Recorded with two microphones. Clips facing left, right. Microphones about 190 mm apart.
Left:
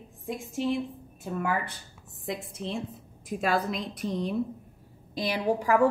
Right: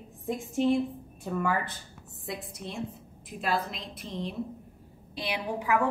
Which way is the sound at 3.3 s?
50° left (ahead or behind).